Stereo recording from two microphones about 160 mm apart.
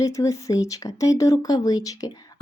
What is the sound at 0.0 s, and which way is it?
Speech, 20° left (ahead or behind).